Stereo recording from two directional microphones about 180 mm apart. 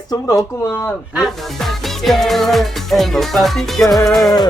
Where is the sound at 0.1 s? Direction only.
20° left (ahead or behind).